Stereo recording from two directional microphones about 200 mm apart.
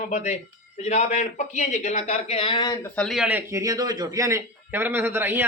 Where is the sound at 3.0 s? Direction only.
Centre (ahead or behind).